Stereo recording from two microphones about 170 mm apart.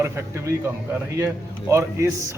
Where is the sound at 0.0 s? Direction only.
15° right (ahead or behind).